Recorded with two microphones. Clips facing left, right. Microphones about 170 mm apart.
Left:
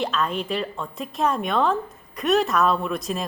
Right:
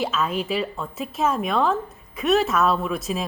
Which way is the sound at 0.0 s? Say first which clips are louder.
Right 1 dB; 5° right (ahead or behind).